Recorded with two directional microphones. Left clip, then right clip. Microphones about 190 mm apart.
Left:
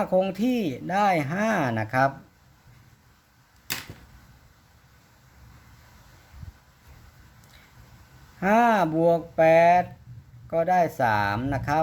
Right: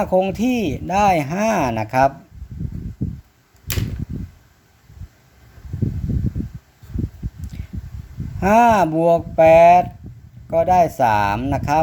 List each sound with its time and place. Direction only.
0.0 s speech: 15° right (ahead or behind)
8.4 s speech: 20° right (ahead or behind)